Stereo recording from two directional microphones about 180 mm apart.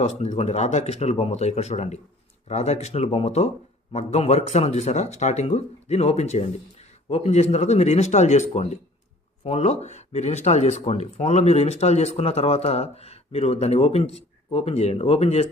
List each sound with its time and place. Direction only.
0.0 s speech: 40° left (ahead or behind)